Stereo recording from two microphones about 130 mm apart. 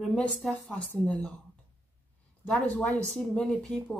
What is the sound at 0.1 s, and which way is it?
Speech, centre (ahead or behind).